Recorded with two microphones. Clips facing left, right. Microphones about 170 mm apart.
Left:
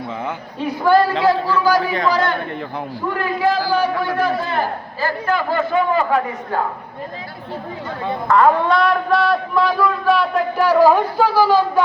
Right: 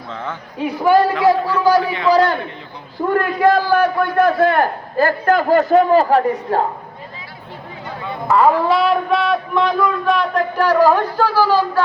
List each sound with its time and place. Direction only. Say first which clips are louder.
1.1 s a man's voice: right 2 dB; 25° left (ahead or behind)
1.5 s a man's voice: right 2 dB; 30° right (ahead or behind)
3.1 s a man's voice: right 5 dB; 55° right (ahead or behind); by 6.6 s 35° right (ahead or behind)
8.3 s a man's voice: right 1 dB; 5° right (ahead or behind); by 11.8 s 15° left (ahead or behind)